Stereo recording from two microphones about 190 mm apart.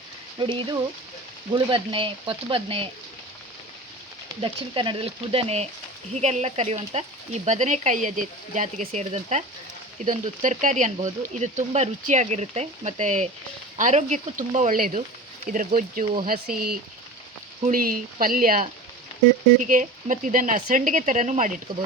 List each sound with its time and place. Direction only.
0.3 s speech: 25° right (ahead or behind)
4.4 s speech: 25° right (ahead or behind); by 16.6 s 50° right (ahead or behind)
17.7 s speech: 45° right (ahead or behind)